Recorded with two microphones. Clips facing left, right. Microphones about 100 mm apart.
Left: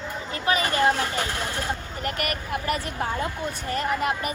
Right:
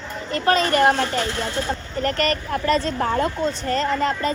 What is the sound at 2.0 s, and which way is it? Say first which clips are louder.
Speech: right 10 dB; 20° left (ahead or behind).